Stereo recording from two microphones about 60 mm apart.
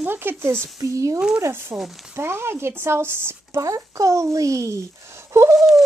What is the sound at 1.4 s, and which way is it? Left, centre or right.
A child's voice, right.